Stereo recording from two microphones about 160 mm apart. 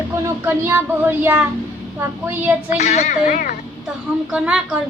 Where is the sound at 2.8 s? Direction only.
45° left (ahead or behind).